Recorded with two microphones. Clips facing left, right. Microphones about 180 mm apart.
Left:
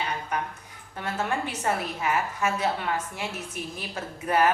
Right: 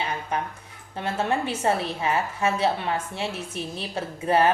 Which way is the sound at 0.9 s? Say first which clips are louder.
Right 3 dB; 25° right (ahead or behind).